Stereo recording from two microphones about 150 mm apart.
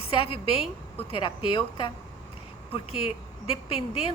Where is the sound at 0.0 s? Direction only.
35° left (ahead or behind).